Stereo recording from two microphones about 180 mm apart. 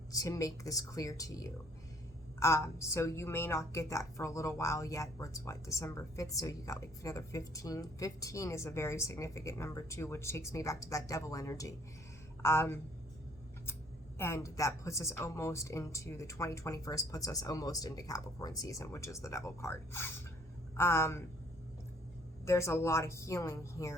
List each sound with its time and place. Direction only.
0.1 s a woman's voice: 20° left (ahead or behind)
14.2 s a woman's voice: 15° left (ahead or behind)
22.4 s a woman's voice: 15° left (ahead or behind)